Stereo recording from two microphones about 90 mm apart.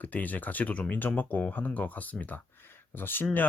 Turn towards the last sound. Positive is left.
turn(degrees=20)  # may be behind; listen again after turning